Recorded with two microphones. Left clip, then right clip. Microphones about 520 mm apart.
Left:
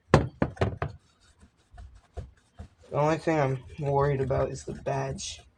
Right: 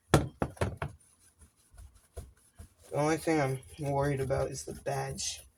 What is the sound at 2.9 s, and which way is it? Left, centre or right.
Speech, right.